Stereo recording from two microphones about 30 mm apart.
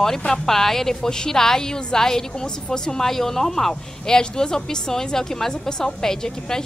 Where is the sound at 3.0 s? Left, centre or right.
Centre.